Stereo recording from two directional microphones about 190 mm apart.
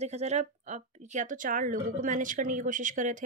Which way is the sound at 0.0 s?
35° right (ahead or behind).